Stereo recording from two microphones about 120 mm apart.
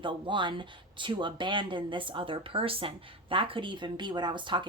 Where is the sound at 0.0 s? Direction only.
45° right (ahead or behind).